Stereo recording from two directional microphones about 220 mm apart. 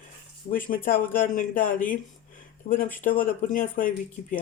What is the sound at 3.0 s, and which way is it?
Speech, 40° left (ahead or behind).